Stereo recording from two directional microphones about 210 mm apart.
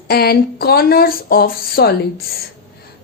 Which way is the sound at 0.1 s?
50° left (ahead or behind).